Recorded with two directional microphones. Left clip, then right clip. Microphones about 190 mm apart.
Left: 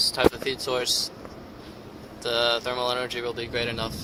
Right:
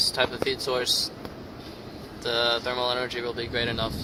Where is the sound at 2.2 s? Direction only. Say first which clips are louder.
Left 1 dB; 50° left (ahead or behind).